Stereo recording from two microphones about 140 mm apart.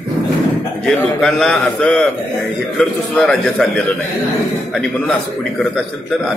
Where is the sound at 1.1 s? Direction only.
5° left (ahead or behind).